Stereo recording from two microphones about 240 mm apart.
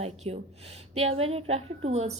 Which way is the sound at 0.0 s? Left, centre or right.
Right.